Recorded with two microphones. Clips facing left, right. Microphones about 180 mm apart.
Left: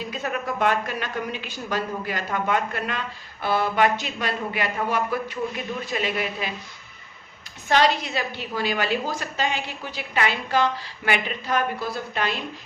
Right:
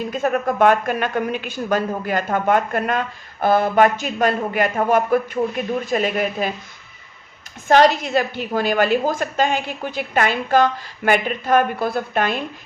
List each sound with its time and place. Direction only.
0.1 s a woman's voice: 50° right (ahead or behind)
7.7 s a woman's voice: 45° right (ahead or behind)